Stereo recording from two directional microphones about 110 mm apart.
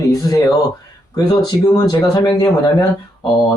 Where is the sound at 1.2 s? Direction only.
35° left (ahead or behind).